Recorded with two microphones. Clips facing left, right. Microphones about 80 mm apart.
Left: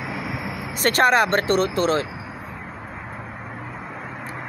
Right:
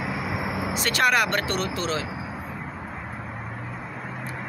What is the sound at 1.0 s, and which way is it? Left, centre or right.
Speech, left.